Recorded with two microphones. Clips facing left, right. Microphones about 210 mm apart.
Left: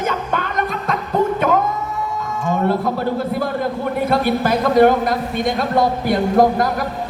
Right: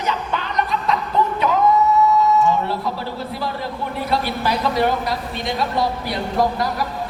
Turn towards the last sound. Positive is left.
turn(degrees=50)  # may be behind; listen again after turning